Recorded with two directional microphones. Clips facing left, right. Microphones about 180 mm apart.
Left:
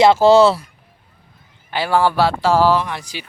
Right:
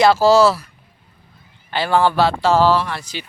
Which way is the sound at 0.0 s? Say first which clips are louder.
Left 2 dB; 25° left (ahead or behind).